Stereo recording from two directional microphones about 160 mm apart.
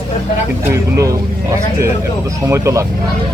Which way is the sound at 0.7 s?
20° right (ahead or behind).